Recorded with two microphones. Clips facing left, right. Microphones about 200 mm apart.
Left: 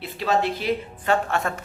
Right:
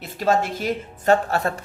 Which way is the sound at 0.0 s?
45° right (ahead or behind).